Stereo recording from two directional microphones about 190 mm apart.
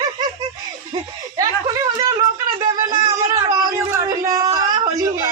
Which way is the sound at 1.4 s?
20° right (ahead or behind).